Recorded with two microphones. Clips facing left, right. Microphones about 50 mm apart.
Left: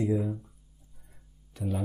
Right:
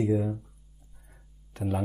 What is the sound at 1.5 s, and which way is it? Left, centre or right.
Speech, right.